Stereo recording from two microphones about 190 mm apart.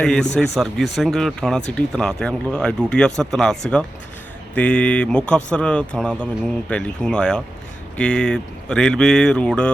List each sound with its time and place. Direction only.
0.0 s speech: 5° left (ahead or behind)